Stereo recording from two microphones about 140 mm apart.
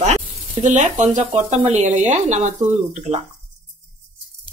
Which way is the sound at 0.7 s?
60° right (ahead or behind).